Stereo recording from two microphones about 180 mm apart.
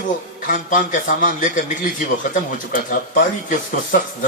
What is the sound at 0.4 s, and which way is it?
A man's voice, 45° left (ahead or behind).